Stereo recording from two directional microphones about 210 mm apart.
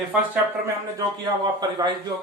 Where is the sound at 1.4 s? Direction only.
20° right (ahead or behind).